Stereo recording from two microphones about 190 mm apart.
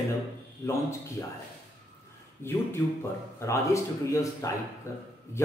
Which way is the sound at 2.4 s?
15° left (ahead or behind).